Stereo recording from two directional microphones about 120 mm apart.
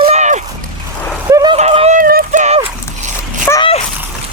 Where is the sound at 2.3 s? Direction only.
90° right.